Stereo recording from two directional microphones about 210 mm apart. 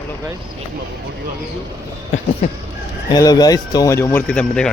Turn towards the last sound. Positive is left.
turn(degrees=5)  # may be behind; listen again after turning